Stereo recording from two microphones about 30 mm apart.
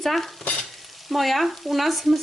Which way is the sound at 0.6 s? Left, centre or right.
Centre.